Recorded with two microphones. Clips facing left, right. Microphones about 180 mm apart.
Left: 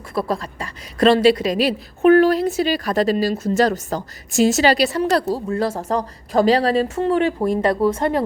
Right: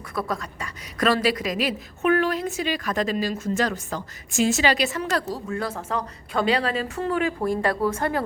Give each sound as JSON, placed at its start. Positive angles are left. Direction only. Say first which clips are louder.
{"t": 0.1, "sound": "a woman's voice", "louder": "left 6 dB", "side_deg": 30}